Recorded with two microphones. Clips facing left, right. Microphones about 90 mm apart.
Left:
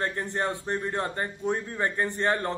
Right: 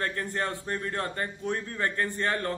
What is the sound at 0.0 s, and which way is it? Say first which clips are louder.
A man's voice: left 2 dB; 20° left (ahead or behind).